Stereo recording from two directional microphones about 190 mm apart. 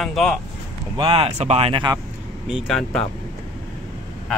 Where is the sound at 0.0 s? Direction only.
Centre (ahead or behind).